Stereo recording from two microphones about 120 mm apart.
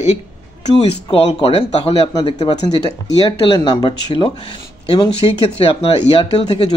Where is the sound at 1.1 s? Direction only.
45° left (ahead or behind).